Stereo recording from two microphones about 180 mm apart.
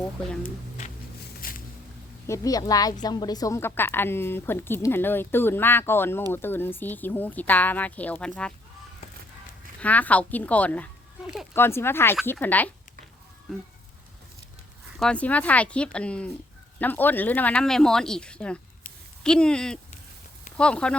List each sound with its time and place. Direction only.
1.4 s a sound: 55° left (ahead or behind)
2.2 s a woman's voice: 15° left (ahead or behind)
9.8 s a woman's voice: 10° left (ahead or behind)
14.9 s a woman's voice: 5° left (ahead or behind)